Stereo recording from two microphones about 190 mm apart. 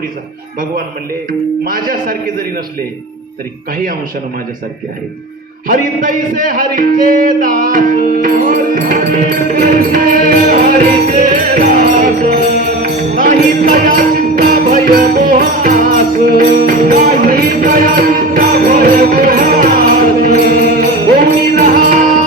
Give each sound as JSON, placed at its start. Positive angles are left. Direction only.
{"t": 1.3, "sound": "speech", "side_deg": -50}
{"t": 5.6, "sound": "music", "side_deg": -45}